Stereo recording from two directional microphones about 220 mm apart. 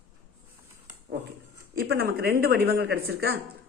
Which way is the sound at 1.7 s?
45° right (ahead or behind).